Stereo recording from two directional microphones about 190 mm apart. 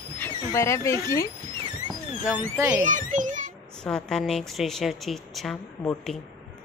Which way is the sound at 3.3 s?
40° right (ahead or behind).